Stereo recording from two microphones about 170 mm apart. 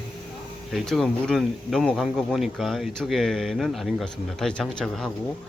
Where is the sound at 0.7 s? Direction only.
Centre (ahead or behind).